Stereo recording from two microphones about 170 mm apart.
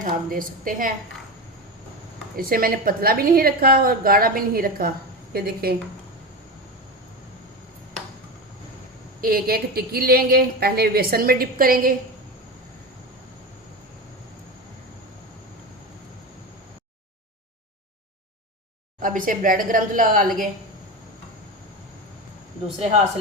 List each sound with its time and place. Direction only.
0.0 s a woman's voice: 55° right (ahead or behind)
2.3 s a woman's voice: 60° right (ahead or behind)
9.2 s a woman's voice: 60° right (ahead or behind)
19.0 s a woman's voice: 55° right (ahead or behind)